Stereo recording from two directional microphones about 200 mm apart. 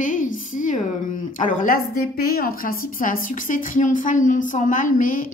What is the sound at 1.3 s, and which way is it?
A woman's voice, 40° left (ahead or behind).